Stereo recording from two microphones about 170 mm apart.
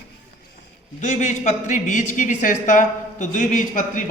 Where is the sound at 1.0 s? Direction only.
45° left (ahead or behind).